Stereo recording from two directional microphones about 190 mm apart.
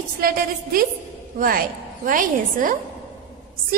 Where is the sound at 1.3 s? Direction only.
45° right (ahead or behind).